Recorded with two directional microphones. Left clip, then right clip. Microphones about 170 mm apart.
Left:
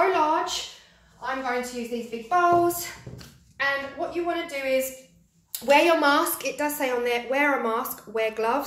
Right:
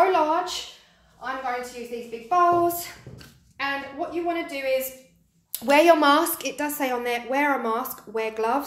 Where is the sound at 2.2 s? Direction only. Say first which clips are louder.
Right 1 dB; 35° right (ahead or behind).